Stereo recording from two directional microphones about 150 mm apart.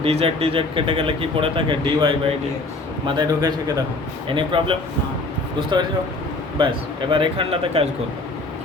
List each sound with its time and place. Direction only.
0.0 s a man's voice: 40° right (ahead or behind)
7.1 s speech: 35° right (ahead or behind)